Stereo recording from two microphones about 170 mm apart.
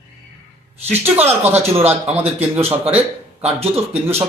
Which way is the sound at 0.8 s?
10° right (ahead or behind).